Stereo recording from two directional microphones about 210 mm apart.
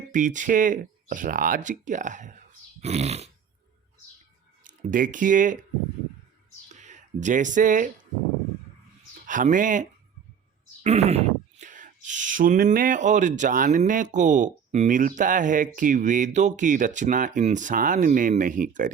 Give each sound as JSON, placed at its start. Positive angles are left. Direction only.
{"t": 0.1, "sound": "speech", "side_deg": -35}
{"t": 4.6, "sound": "speech", "side_deg": -40}
{"t": 6.7, "sound": "speech", "side_deg": -35}
{"t": 9.2, "sound": "speech", "side_deg": -40}
{"t": 10.8, "sound": "speech", "side_deg": -30}